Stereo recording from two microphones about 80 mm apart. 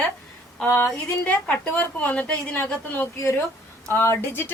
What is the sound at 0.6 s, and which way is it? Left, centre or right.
Speech, left.